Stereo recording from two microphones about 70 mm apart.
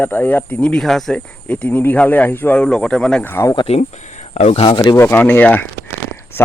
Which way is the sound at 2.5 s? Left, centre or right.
Centre.